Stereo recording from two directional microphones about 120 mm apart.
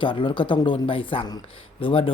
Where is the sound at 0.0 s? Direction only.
45° left (ahead or behind).